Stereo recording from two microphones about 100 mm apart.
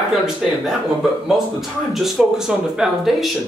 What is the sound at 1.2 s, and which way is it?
Speech, 5° right (ahead or behind).